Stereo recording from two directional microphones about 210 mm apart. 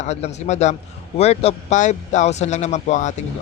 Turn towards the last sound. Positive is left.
turn(degrees=35)  # may be behind; listen again after turning